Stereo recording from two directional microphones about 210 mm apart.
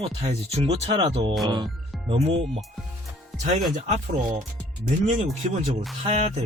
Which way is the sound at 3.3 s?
35° right (ahead or behind).